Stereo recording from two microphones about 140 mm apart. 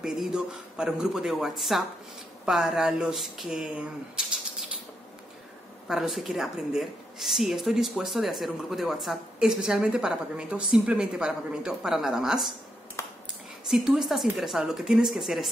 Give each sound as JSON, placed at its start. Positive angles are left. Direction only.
{"t": 0.0, "sound": "a woman's voice", "side_deg": -5}
{"t": 5.9, "sound": "a woman's voice", "side_deg": -5}
{"t": 13.0, "sound": "finger snapping", "side_deg": 20}
{"t": 13.7, "sound": "a woman's voice", "side_deg": -5}